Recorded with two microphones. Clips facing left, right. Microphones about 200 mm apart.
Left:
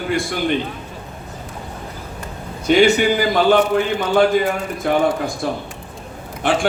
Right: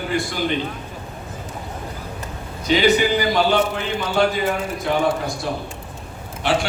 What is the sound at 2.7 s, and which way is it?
A man's voice, 55° left (ahead or behind).